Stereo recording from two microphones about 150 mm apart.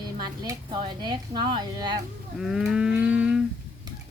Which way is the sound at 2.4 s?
5° right (ahead or behind).